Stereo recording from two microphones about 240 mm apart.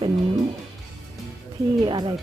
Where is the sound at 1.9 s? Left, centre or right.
Centre.